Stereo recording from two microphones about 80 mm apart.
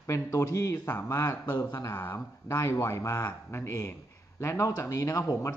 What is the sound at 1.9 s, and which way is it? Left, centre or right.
A man's voice, left.